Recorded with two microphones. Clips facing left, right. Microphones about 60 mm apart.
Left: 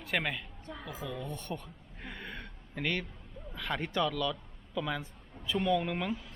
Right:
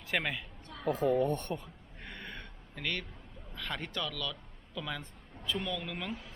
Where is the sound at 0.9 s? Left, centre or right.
Right.